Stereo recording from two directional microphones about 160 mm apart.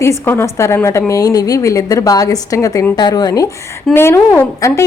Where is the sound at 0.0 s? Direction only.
15° left (ahead or behind).